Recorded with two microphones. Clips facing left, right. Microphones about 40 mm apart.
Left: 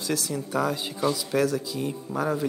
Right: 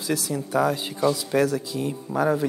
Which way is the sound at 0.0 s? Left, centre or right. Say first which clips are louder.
Right 2 dB; centre.